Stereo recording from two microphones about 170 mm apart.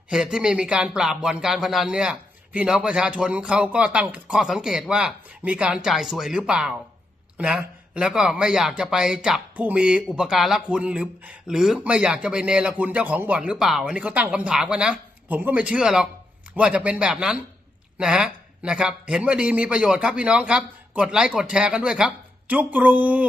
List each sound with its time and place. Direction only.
0.1 s speech: 5° right (ahead or behind)